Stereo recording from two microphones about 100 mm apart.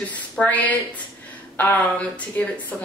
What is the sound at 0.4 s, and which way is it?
A woman's voice, 15° left (ahead or behind).